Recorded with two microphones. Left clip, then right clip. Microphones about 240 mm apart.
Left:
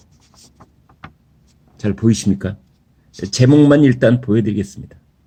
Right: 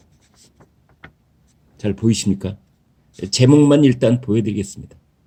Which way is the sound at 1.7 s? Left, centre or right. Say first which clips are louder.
Left 2 dB; centre.